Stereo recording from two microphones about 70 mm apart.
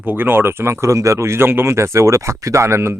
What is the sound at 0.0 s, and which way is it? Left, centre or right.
Speech, right.